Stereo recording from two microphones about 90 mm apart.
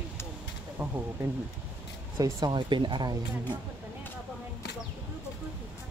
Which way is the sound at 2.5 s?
60° right (ahead or behind).